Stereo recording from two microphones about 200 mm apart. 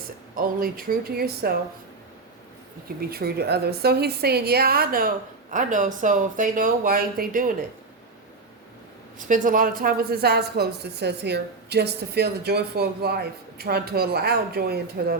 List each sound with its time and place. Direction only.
0.3 s a woman's voice: 45° right (ahead or behind)
3.0 s a woman's voice: 50° right (ahead or behind)
9.1 s a woman's voice: 40° right (ahead or behind)